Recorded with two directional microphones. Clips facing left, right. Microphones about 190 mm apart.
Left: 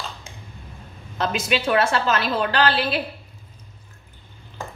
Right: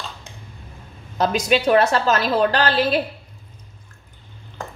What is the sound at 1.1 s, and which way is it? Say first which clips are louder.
A woman's voice: right 5 dB; 40° right (ahead or behind).